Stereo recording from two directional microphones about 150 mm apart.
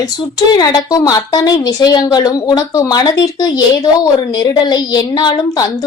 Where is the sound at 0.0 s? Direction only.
25° left (ahead or behind).